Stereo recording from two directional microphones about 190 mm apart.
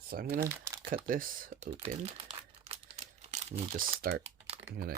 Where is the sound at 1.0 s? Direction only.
45° right (ahead or behind).